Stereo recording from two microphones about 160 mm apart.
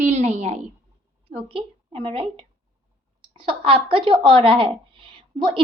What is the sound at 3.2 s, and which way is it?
Speech, 35° right (ahead or behind).